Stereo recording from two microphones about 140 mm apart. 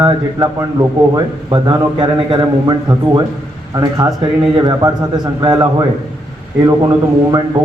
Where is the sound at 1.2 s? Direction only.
35° right (ahead or behind).